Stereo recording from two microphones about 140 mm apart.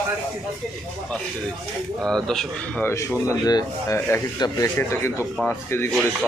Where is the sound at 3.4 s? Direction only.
25° left (ahead or behind).